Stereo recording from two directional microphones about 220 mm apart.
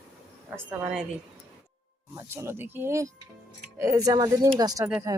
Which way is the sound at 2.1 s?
10° right (ahead or behind).